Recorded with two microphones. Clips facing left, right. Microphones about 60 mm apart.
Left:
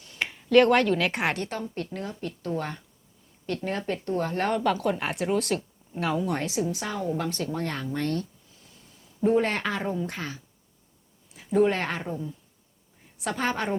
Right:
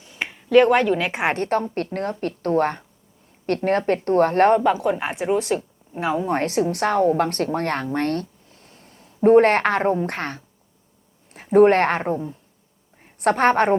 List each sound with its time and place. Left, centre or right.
0.0 s a sound: centre
1.2 s a woman's voice: right
1.5 s a woman's voice: right
4.6 s speech: centre
5.5 s a sound: right
6.1 s a woman's voice: right
6.4 s a woman's voice: right